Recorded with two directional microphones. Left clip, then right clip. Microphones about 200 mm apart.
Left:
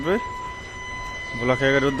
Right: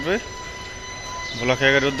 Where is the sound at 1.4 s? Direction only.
15° left (ahead or behind).